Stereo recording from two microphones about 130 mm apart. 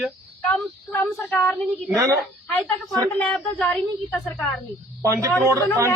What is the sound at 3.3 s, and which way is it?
Speech, 10° left (ahead or behind).